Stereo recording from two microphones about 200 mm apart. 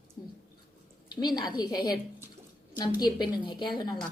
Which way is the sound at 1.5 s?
20° left (ahead or behind).